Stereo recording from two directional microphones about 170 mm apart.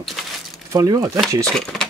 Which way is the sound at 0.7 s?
20° right (ahead or behind).